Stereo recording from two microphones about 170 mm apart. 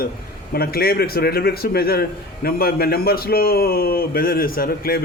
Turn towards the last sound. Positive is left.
turn(degrees=60)  # may be behind; listen again after turning